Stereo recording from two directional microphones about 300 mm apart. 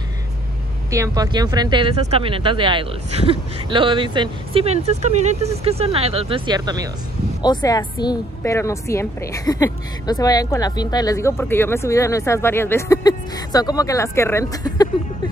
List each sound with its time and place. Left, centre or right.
0.9 s speech: centre
7.4 s a woman's voice: centre